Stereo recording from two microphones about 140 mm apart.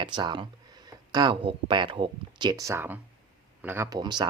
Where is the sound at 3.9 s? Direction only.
30° right (ahead or behind).